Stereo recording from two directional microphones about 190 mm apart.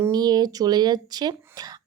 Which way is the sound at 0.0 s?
20° right (ahead or behind).